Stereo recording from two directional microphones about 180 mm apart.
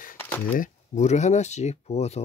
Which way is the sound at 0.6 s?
40° left (ahead or behind).